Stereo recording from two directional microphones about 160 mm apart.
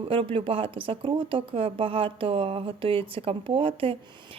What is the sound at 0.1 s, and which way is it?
A woman's voice, 35° right (ahead or behind).